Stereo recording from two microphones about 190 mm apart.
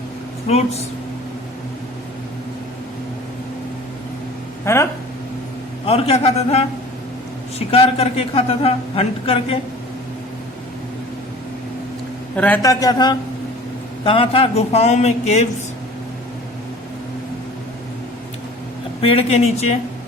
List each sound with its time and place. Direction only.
0.4 s a man's voice: 35° left (ahead or behind)
4.6 s speech: 15° left (ahead or behind)
5.8 s a man's voice: 30° left (ahead or behind)
7.7 s a man's voice: 30° left (ahead or behind)
12.4 s a man's voice: 15° left (ahead or behind); by 15.4 s 35° left (ahead or behind)
19.0 s a man's voice: 30° left (ahead or behind)